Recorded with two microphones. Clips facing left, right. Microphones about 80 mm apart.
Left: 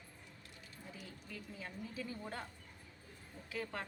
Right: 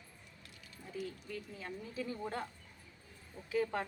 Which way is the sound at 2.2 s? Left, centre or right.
Centre.